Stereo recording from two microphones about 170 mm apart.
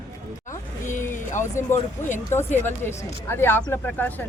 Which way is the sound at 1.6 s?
15° left (ahead or behind).